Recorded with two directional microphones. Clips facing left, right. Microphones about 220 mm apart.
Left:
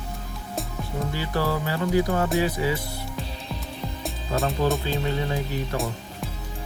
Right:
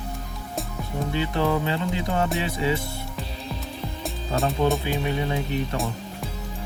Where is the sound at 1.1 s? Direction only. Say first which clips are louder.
Right 4 dB; 20° right (ahead or behind).